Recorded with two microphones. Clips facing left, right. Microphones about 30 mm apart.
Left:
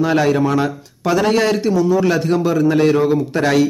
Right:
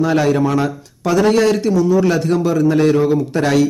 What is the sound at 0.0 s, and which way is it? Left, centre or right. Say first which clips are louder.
A man's voice: even; centre.